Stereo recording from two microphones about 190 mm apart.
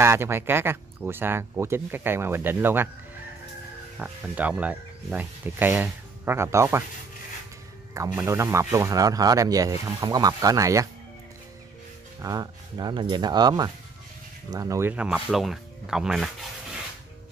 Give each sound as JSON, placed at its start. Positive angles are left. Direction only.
{"t": 0.0, "sound": "speech", "side_deg": -15}
{"t": 4.0, "sound": "speech", "side_deg": -5}
{"t": 7.9, "sound": "speech", "side_deg": -15}
{"t": 12.2, "sound": "speech", "side_deg": -20}